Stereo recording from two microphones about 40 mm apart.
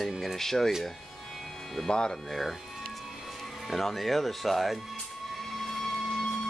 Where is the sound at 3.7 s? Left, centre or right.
Centre.